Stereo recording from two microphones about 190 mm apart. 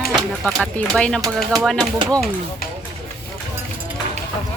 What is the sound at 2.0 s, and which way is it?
Speech, 15° right (ahead or behind).